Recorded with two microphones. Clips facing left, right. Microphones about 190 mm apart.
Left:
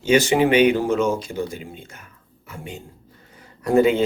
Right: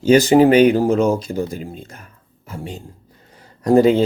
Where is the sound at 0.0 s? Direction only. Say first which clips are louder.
Right 6 dB; 35° right (ahead or behind).